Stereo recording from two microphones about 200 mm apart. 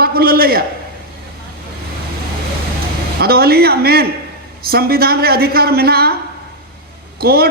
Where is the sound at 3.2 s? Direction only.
50° right (ahead or behind).